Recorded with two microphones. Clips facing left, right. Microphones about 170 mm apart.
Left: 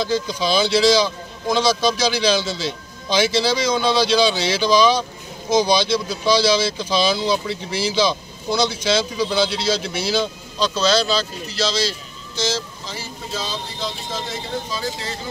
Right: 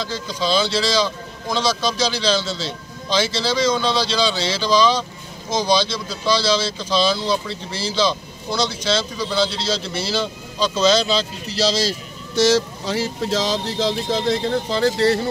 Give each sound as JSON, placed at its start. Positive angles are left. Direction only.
{"t": 0.0, "sound": "a man's voice", "side_deg": 15}
{"t": 10.1, "sound": "speech", "side_deg": -10}
{"t": 11.5, "sound": "speech", "side_deg": -40}
{"t": 12.4, "sound": "speech", "side_deg": -70}
{"t": 14.7, "sound": "speech", "side_deg": -70}